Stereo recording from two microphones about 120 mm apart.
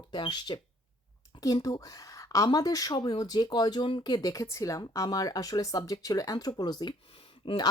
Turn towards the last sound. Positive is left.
turn(degrees=45)  # may be behind; listen again after turning